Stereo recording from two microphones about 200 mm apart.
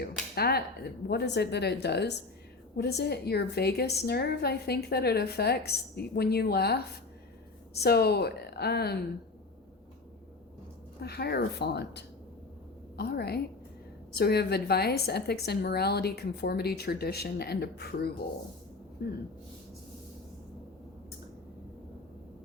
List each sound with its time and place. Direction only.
0.0 s finger snapping: 50° left (ahead or behind)
1.0 s a woman's voice: 55° left (ahead or behind)
11.0 s a woman's voice: 55° left (ahead or behind)